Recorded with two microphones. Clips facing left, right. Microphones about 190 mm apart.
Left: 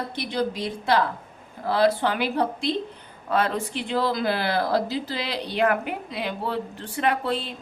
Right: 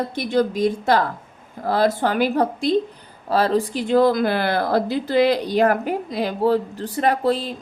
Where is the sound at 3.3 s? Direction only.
35° right (ahead or behind).